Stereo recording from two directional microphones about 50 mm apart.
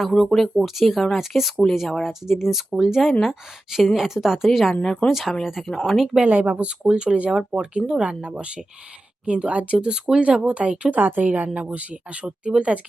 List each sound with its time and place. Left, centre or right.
0.2 s speech: centre
4.7 s speech: centre
6.1 s speech: right
10.9 s a woman's voice: right